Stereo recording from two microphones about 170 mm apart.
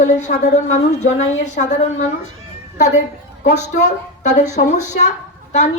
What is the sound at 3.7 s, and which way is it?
Speech, 45° left (ahead or behind).